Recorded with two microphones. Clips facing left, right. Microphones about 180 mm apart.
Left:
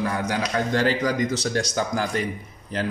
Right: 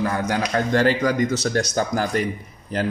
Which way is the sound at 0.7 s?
55° right (ahead or behind).